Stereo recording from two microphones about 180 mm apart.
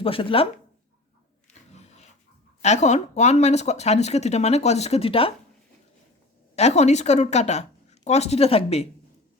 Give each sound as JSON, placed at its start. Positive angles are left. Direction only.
{"t": 0.0, "sound": "speech", "side_deg": 30}
{"t": 1.7, "sound": "dog", "side_deg": 40}
{"t": 2.6, "sound": "speech", "side_deg": 40}
{"t": 6.6, "sound": "speech", "side_deg": 40}